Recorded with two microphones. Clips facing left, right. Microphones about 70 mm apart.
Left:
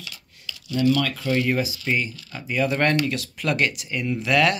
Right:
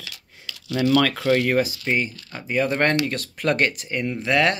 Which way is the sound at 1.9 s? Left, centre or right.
Right.